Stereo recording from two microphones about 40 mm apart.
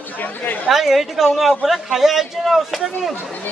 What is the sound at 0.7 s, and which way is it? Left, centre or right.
A man's voice, centre.